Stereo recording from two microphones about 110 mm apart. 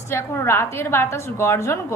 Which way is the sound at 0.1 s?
25° left (ahead or behind).